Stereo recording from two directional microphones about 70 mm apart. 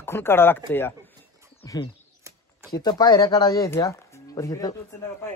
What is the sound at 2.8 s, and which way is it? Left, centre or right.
Speech, left.